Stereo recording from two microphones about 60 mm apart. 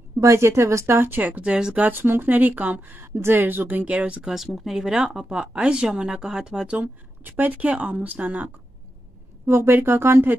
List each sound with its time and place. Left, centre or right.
0.2 s a woman's voice: right
0.9 s speech: right
1.8 s speech: right
3.0 s speech: right
4.3 s speech: centre
6.8 s speech: right
9.5 s speech: right